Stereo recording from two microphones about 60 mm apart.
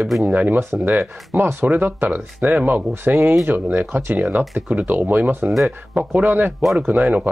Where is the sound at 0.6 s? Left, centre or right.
Right.